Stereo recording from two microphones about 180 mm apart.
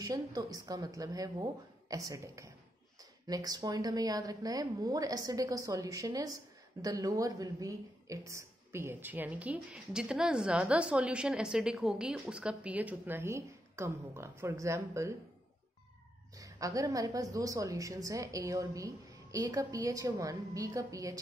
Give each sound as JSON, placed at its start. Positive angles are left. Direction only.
{"t": 0.0, "sound": "a woman's voice", "side_deg": -20}
{"t": 16.3, "sound": "speech", "side_deg": -20}